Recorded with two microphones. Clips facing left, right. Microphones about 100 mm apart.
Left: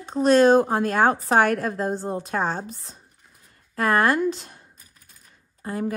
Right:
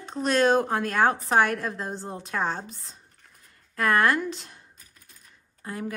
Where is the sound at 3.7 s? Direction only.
35° left (ahead or behind).